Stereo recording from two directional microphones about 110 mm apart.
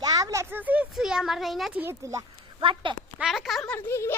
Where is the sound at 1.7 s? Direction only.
15° right (ahead or behind).